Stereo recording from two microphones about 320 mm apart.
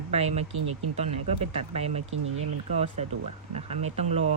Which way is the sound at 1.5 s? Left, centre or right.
Centre.